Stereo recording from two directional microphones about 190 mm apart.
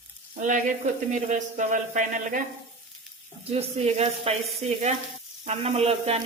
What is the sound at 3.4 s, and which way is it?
Speech, 30° right (ahead or behind).